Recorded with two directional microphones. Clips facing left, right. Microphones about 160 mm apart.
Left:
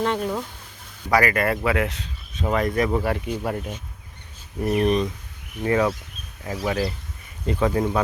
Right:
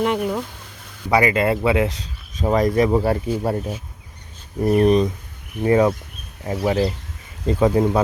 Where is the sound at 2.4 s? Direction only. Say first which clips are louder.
Right 5 dB; 35° right (ahead or behind).